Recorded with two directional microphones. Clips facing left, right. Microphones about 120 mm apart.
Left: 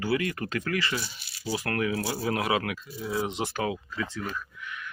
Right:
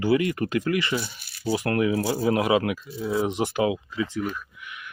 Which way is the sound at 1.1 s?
55° right (ahead or behind).